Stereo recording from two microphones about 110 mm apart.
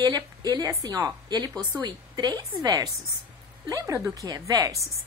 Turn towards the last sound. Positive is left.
turn(degrees=-30)  # may be behind; listen again after turning